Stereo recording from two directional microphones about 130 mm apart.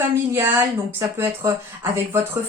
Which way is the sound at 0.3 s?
15° right (ahead or behind).